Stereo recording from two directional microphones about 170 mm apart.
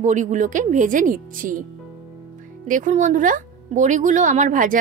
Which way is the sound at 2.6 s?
50° right (ahead or behind).